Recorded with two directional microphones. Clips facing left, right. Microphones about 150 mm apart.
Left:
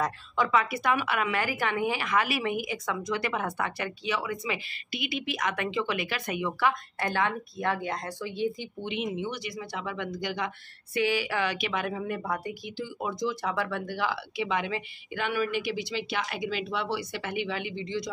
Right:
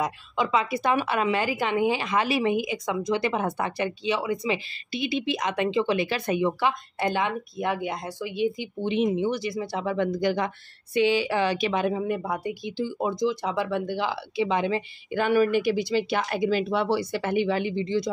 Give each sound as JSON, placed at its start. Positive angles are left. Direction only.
{"t": 0.0, "sound": "a woman's voice", "side_deg": -20}
{"t": 8.8, "sound": "speech", "side_deg": -40}
{"t": 11.0, "sound": "a woman's voice", "side_deg": -25}